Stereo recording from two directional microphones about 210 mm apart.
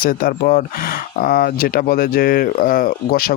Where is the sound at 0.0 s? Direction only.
45° left (ahead or behind).